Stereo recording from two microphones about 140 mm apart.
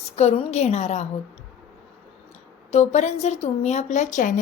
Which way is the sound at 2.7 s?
55° left (ahead or behind).